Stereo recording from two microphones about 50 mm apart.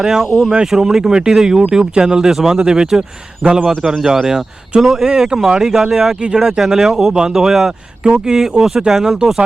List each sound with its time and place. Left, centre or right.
0.0 s speech: centre
2.6 s speech: centre
3.8 s speech: centre